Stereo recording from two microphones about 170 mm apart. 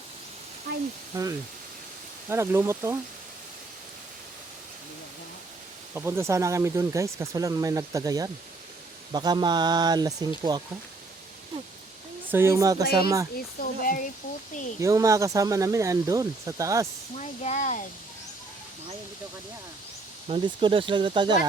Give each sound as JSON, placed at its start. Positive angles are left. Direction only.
{"t": 1.1, "sound": "speech", "side_deg": -20}
{"t": 5.9, "sound": "speech", "side_deg": -15}
{"t": 12.3, "sound": "speech", "side_deg": -15}
{"t": 13.3, "sound": "speech", "side_deg": 55}
{"t": 14.8, "sound": "speech", "side_deg": -20}
{"t": 17.2, "sound": "speech", "side_deg": 45}
{"t": 20.2, "sound": "speech", "side_deg": -35}